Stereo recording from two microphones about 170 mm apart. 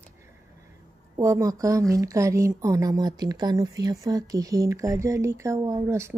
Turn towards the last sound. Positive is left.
turn(degrees=-15)  # may be behind; listen again after turning